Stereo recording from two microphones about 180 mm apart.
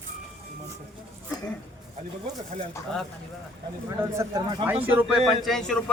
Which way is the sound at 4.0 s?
20° right (ahead or behind).